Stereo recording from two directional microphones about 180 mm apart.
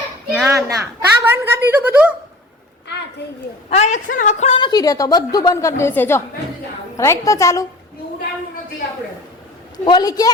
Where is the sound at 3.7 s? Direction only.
35° left (ahead or behind).